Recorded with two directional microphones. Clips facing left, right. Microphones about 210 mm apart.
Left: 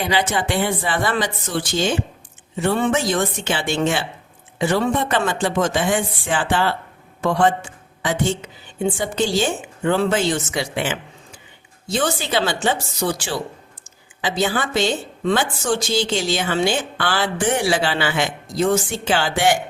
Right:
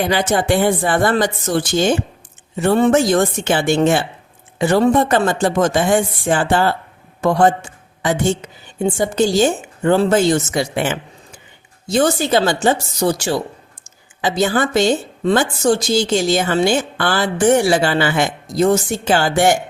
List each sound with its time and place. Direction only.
0.0 s a man's voice: 50° right (ahead or behind)